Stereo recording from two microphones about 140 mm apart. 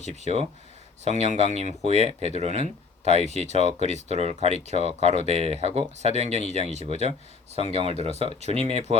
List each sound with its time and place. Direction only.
0.2 s speech: 50° right (ahead or behind)